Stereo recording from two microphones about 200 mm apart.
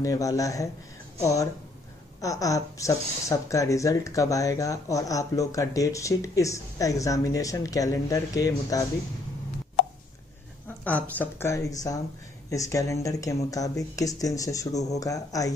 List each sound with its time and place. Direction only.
0.0 s speech: 15° left (ahead or behind)
10.8 s speech: 5° left (ahead or behind)